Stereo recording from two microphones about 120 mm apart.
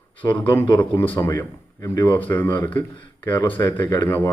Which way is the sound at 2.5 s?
45° left (ahead or behind).